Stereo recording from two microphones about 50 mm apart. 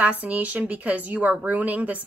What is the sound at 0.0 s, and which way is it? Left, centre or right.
A woman's voice, right.